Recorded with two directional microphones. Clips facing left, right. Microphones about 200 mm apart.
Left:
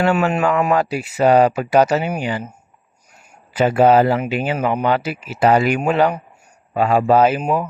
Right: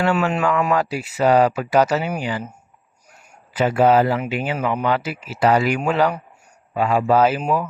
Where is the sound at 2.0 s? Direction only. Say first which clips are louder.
Left 2 dB; 15° left (ahead or behind).